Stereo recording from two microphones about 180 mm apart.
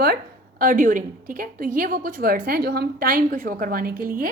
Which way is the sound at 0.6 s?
50° right (ahead or behind).